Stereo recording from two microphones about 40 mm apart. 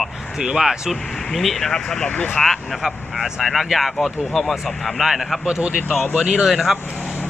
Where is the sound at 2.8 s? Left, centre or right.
Centre.